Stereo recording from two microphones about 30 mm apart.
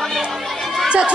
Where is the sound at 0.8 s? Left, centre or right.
Right.